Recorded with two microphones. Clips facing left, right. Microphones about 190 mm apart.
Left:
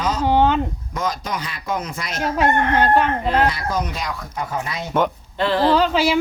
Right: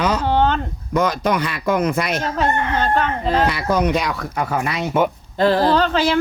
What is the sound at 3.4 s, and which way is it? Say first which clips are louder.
Speech: right 4 dB; 65° right (ahead or behind).